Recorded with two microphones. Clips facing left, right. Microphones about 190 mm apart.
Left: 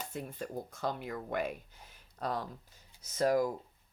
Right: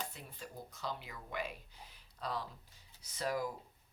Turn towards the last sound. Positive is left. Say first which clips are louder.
# left 9 dB
turn(degrees=45)  # may be behind; listen again after turning